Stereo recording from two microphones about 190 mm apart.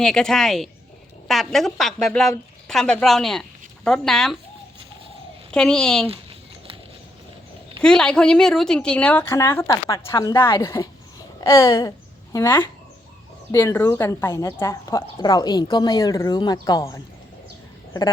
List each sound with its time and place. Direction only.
0.0 s a woman's voice: 5° left (ahead or behind)
5.5 s a woman's voice: 5° left (ahead or behind)
7.8 s a woman's voice: 5° left (ahead or behind)